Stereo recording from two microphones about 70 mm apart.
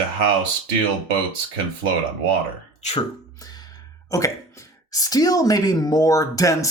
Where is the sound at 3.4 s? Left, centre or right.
Left.